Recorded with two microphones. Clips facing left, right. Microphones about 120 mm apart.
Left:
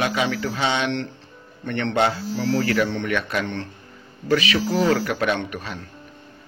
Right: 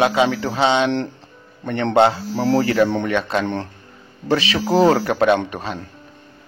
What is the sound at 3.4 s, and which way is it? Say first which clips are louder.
A man's voice: right 5 dB; 40° right (ahead or behind).